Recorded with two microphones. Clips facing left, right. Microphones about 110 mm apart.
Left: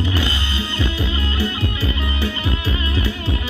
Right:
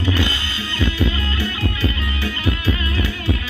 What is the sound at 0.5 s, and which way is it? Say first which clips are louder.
Music: right 2 dB; 25° left (ahead or behind).